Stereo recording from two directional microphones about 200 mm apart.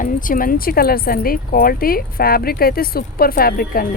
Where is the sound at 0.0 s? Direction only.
40° left (ahead or behind).